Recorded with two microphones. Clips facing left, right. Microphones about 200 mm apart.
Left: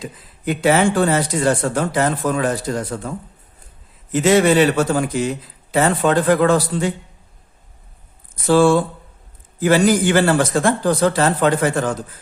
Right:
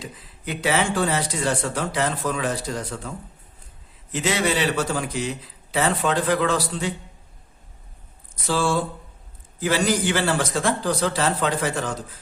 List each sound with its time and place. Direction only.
0.0 s speech: 50° left (ahead or behind)
4.1 s speech: 50° left (ahead or behind)
8.4 s speech: 50° left (ahead or behind)